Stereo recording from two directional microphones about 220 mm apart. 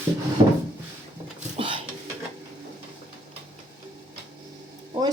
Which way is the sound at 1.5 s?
25° right (ahead or behind).